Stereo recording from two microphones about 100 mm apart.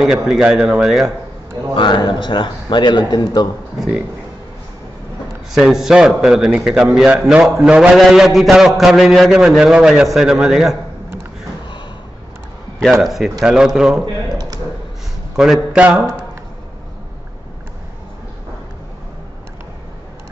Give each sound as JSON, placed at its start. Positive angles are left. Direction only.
{"t": 0.0, "sound": "a man's voice", "side_deg": -5}
{"t": 1.8, "sound": "speech", "side_deg": 50}
{"t": 5.5, "sound": "a man's voice", "side_deg": -5}
{"t": 13.0, "sound": "a man's voice", "side_deg": -5}
{"t": 15.3, "sound": "a man's voice", "side_deg": -5}